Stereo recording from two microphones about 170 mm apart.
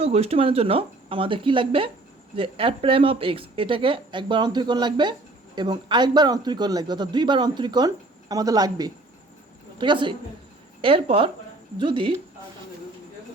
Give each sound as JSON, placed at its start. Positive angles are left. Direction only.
{"t": 0.0, "sound": "a man's voice", "side_deg": -35}